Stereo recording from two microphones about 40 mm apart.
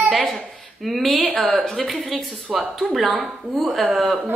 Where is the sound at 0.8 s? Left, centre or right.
Centre.